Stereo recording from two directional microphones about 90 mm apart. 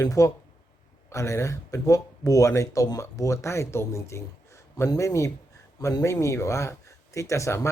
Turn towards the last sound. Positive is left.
turn(degrees=30)  # may be behind; listen again after turning